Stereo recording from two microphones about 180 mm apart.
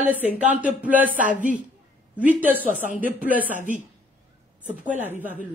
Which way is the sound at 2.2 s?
10° right (ahead or behind).